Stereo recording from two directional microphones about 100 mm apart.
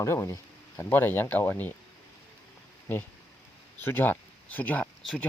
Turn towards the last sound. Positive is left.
turn(degrees=5)  # may be behind; listen again after turning